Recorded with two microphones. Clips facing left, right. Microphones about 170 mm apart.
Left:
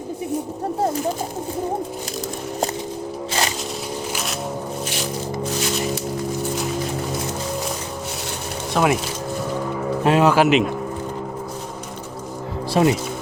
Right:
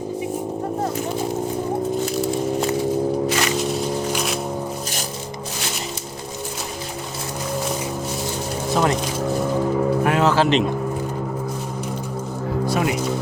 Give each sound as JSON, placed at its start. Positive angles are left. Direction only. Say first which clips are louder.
{"t": 2.2, "sound": "a sound", "louder": "right 5 dB", "side_deg": 40}
{"t": 8.7, "sound": "speech", "louder": "left 1 dB", "side_deg": 10}
{"t": 10.0, "sound": "speech", "louder": "left 6 dB", "side_deg": 20}
{"t": 12.7, "sound": "speech", "louder": "left 6 dB", "side_deg": 30}